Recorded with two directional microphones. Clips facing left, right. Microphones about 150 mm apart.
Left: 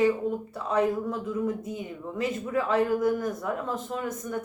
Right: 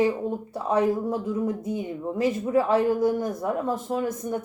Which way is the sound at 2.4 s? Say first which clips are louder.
Right 4 dB; 30° right (ahead or behind).